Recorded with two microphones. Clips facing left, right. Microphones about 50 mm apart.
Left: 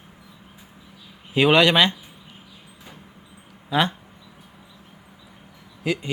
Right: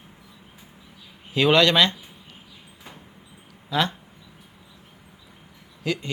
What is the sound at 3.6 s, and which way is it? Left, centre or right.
Speech, centre.